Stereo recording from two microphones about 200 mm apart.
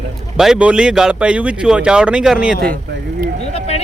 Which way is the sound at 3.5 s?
30° left (ahead or behind).